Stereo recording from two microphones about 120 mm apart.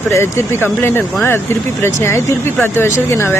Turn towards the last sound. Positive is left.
turn(degrees=20)  # may be behind; listen again after turning